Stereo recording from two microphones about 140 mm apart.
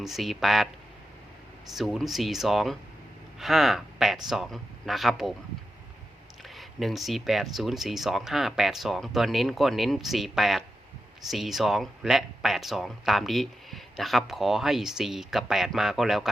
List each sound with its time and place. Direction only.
0.0 s speech: centre (ahead or behind)
1.7 s speech: centre (ahead or behind)
6.5 s speech: centre (ahead or behind)